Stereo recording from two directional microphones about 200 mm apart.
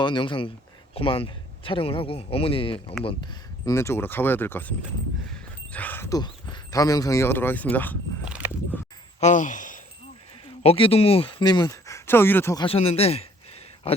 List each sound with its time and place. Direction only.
0.0 s speech: 25° left (ahead or behind)
3.7 s speech: 15° left (ahead or behind)
8.2 s horse: 5° right (ahead or behind)
9.2 s speech: 40° left (ahead or behind)
10.6 s speech: 30° left (ahead or behind); by 12.6 s 10° left (ahead or behind)
12.6 s speech: 30° left (ahead or behind)